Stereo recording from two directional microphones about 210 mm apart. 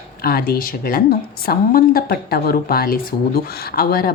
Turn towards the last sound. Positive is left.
turn(degrees=45)  # may be behind; listen again after turning